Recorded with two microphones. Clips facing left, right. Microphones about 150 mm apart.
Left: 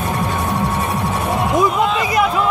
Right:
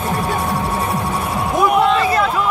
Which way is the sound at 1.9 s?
15° left (ahead or behind).